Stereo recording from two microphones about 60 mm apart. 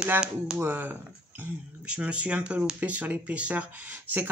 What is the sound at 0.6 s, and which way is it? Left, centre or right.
Speech, right.